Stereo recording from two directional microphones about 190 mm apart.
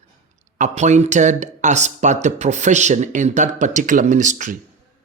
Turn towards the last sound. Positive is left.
turn(degrees=-40)  # may be behind; listen again after turning